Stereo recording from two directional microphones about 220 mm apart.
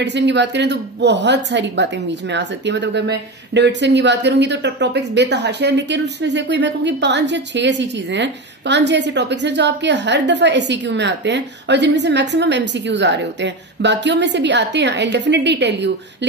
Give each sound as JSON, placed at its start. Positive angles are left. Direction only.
{"t": 0.0, "sound": "speech", "side_deg": -50}